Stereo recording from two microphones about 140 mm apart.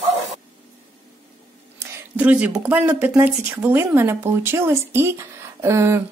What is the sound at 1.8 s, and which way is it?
Speech, 10° right (ahead or behind).